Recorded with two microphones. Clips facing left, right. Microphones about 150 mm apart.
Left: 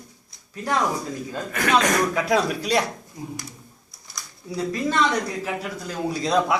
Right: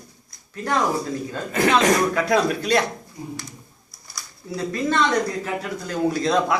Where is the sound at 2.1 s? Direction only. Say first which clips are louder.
Right 2 dB; 10° left (ahead or behind).